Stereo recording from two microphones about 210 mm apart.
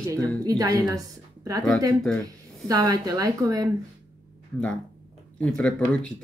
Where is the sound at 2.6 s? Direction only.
15° right (ahead or behind).